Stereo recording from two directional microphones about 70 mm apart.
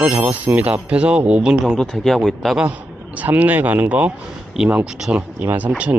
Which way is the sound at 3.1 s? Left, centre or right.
Right.